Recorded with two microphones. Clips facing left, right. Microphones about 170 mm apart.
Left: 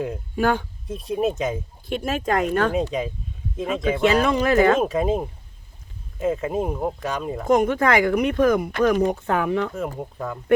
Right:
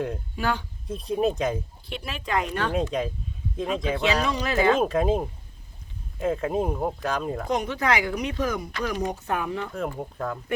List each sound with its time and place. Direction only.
0.3 s speech: 50° left (ahead or behind)
0.9 s speech: centre (ahead or behind)
1.9 s speech: 45° left (ahead or behind)
4.8 s speech: centre (ahead or behind)
7.4 s speech: 50° left (ahead or behind); by 9.7 s 65° left (ahead or behind)
10.0 s speech: centre (ahead or behind)